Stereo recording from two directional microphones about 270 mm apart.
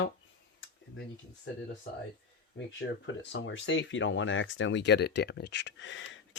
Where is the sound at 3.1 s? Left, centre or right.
Left.